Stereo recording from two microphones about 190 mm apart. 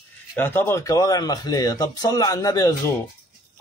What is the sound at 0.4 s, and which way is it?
A man's voice, 10° left (ahead or behind).